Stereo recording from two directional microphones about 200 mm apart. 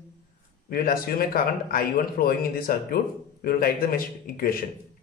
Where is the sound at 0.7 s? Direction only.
45° left (ahead or behind).